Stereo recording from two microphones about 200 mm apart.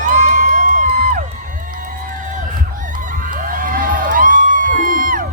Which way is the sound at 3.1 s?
45° right (ahead or behind).